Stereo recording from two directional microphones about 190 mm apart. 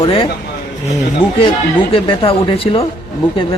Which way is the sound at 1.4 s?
30° left (ahead or behind).